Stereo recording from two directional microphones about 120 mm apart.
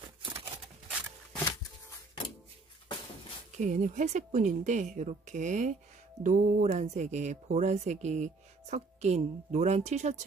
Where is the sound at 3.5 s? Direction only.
90° right.